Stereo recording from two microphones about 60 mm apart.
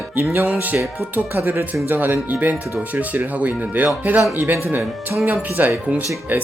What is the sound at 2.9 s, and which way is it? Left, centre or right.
Speech, right.